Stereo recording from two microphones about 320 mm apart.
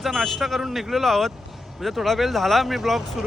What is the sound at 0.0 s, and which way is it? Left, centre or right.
Speech, centre.